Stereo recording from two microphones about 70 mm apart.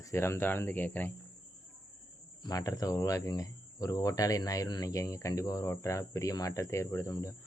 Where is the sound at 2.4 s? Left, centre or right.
Left.